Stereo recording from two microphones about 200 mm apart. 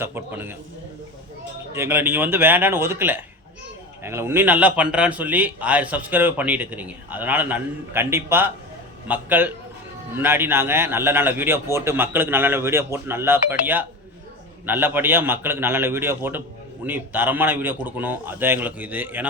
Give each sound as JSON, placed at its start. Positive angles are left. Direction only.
{"t": 0.0, "sound": "a man's voice", "side_deg": -10}
{"t": 1.7, "sound": "a man's voice", "side_deg": -10}